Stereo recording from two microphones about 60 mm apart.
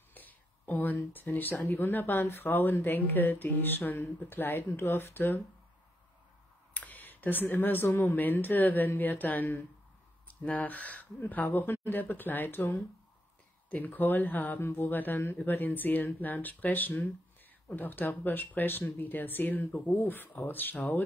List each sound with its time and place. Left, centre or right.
0.1 s a sound: left
1.7 s speech: left
6.7 s speech: left
13.7 s speech: left